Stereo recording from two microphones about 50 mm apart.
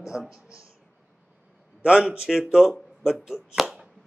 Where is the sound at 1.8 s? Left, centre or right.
Centre.